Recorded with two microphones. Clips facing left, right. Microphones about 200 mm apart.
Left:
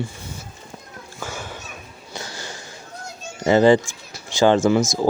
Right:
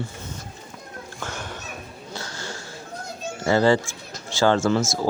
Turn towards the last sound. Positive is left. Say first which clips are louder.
# left 4 dB
turn(degrees=15)  # may be behind; listen again after turning